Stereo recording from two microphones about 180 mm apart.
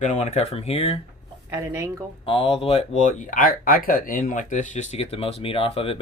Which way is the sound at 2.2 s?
30° left (ahead or behind).